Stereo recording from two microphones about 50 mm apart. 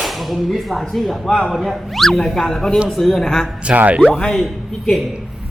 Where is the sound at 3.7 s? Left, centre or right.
Right.